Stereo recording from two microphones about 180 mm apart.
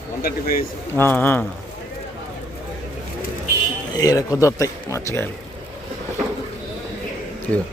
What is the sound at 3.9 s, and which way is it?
Speech, 20° left (ahead or behind).